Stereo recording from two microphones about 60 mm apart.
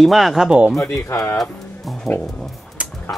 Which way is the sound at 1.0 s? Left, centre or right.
Left.